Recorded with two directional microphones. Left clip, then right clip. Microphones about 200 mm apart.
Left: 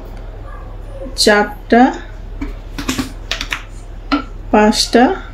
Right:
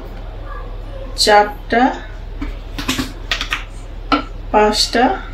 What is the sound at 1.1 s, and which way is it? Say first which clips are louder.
Speech: right 1 dB; 50° left (ahead or behind).